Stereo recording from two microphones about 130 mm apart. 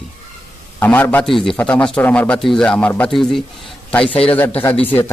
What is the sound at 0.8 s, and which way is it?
Speech, 15° left (ahead or behind).